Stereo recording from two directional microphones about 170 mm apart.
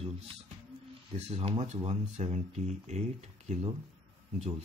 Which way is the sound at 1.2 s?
35° right (ahead or behind).